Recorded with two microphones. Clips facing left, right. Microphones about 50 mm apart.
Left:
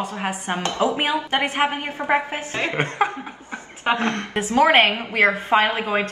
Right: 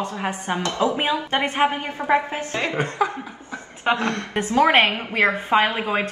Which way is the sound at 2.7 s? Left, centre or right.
Left.